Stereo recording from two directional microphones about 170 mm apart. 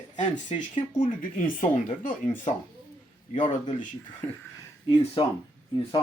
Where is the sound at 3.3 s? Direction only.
45° left (ahead or behind).